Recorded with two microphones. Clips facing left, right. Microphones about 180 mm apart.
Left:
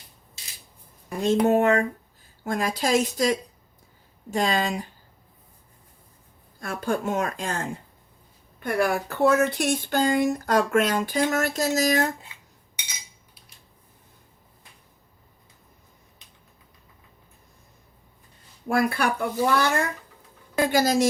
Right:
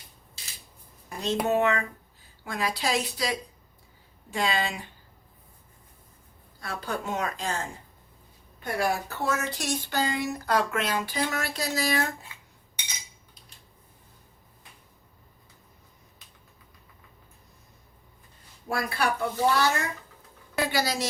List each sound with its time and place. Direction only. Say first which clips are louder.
1.2 s speech: left 5 dB; 50° left (ahead or behind)
6.6 s speech: left 6 dB; 50° left (ahead or behind)
18.7 s speech: left 5 dB; 55° left (ahead or behind)